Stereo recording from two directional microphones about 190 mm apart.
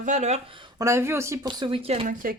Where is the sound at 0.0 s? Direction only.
40° right (ahead or behind).